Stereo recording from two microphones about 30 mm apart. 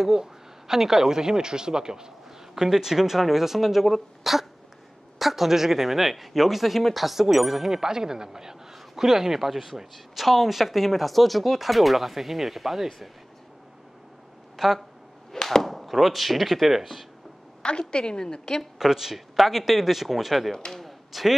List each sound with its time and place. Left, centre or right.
0.2 s a man's voice: centre
2.5 s speech: centre
7.8 s speech: centre
14.6 s speech: centre
15.4 s speech: centre
17.6 s a woman's voice: left
18.8 s speech: centre
20.5 s a woman's voice: left
20.8 s a sound: centre